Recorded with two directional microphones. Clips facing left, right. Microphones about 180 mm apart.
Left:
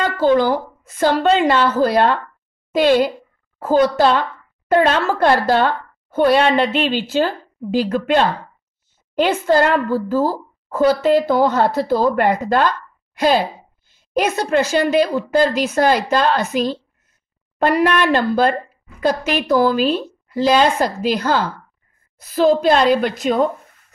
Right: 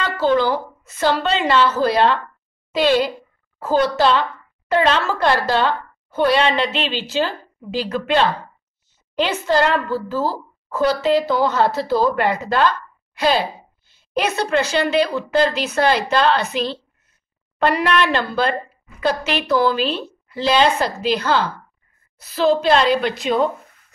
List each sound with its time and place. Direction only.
0.0 s a woman's voice: 50° left (ahead or behind)
9.1 s a woman's voice: 50° left (ahead or behind)